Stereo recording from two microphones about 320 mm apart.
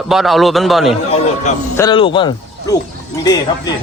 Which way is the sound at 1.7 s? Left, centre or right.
Centre.